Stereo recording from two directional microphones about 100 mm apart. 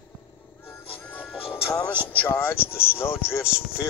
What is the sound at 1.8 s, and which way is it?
Speech, 10° left (ahead or behind).